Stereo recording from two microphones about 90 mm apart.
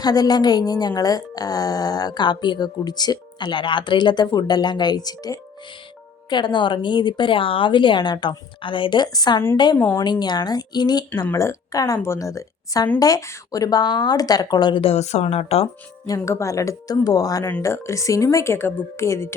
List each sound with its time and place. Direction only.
0.0 s speech: 45° left (ahead or behind)
6.3 s a woman's voice: 60° left (ahead or behind)
9.1 s speech: 50° left (ahead or behind)
9.7 s a woman's voice: 20° left (ahead or behind)
10.0 s speech: 55° left (ahead or behind)
11.3 s a woman's voice: 35° left (ahead or behind); by 14.8 s 50° left (ahead or behind)
15.4 s speech: 90° left
16.0 s a woman's voice: 35° left (ahead or behind)